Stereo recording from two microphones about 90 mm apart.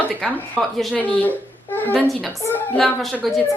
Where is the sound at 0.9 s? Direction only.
20° left (ahead or behind).